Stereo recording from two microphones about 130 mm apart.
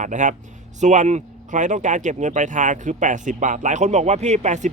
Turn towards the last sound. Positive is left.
turn(degrees=-65)  # may be behind; listen again after turning